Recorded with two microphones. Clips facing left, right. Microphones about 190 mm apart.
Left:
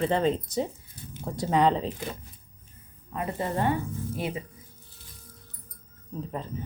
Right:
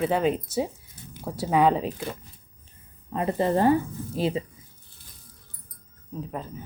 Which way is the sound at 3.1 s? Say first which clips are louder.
Right 6 dB; 35° right (ahead or behind).